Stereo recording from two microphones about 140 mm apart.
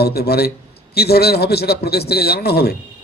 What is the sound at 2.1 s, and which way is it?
Speech, 90° left.